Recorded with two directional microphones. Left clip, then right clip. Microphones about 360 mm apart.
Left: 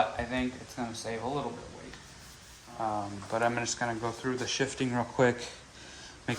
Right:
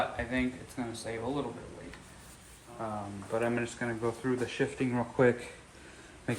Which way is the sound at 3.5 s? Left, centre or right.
Centre.